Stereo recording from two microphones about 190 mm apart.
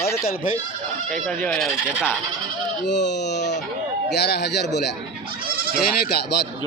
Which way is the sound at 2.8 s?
65° left (ahead or behind).